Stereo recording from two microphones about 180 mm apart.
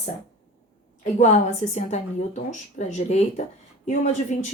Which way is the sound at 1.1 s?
40° left (ahead or behind).